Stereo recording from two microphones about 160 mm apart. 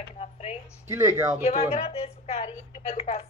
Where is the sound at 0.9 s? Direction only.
20° right (ahead or behind).